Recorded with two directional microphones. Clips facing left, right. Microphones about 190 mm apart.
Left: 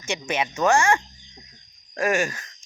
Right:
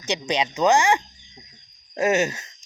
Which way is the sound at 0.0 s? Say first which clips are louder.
Right 2 dB; 15° right (ahead or behind).